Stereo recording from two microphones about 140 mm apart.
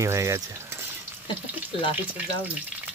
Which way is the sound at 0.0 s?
20° right (ahead or behind).